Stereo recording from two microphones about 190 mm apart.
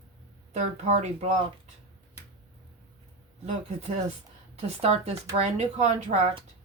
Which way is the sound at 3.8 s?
35° right (ahead or behind).